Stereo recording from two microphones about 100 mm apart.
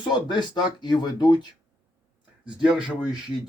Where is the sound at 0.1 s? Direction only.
50° left (ahead or behind).